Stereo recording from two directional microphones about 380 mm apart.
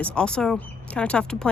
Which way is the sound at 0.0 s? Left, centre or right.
Centre.